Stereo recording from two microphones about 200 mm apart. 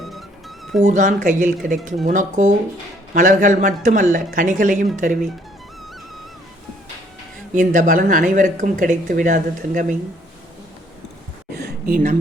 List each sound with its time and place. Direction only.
0.0 s music: centre (ahead or behind)
0.8 s speech: 40° right (ahead or behind)
7.5 s speech: 40° right (ahead or behind)
11.5 s a sound: 50° right (ahead or behind)